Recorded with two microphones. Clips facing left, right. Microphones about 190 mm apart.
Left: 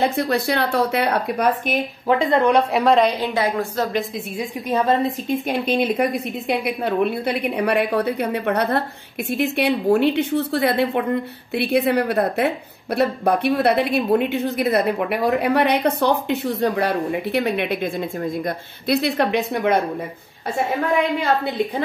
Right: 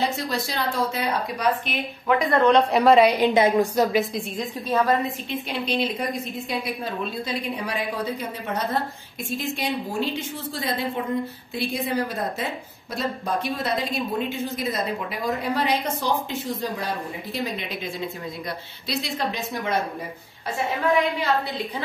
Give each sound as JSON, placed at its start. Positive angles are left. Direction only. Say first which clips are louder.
{"t": 0.0, "sound": "a woman's voice", "louder": "left 6 dB", "side_deg": 55}
{"t": 2.0, "sound": "speech", "louder": "left 3 dB", "side_deg": 30}
{"t": 2.4, "sound": "a woman's voice", "louder": "even", "side_deg": 5}
{"t": 4.6, "sound": "a woman's voice", "louder": "left 2 dB", "side_deg": 15}
{"t": 5.3, "sound": "a woman's voice", "louder": "left 7 dB", "side_deg": 50}